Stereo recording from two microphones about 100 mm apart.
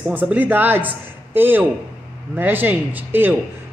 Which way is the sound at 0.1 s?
20° right (ahead or behind).